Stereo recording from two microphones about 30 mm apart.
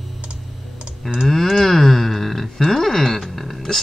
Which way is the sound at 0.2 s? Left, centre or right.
Right.